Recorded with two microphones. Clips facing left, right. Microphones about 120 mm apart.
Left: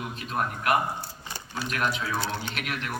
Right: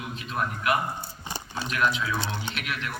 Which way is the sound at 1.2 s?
25° right (ahead or behind).